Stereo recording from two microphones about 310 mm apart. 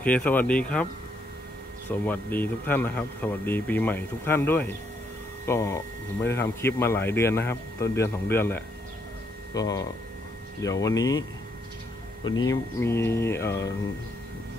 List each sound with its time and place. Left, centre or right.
0.0 s speech: centre
1.9 s speech: centre
12.3 s speech: centre